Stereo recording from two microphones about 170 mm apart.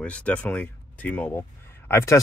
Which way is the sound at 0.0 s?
5° left (ahead or behind).